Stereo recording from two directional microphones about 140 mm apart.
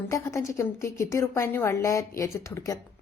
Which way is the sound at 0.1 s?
20° left (ahead or behind).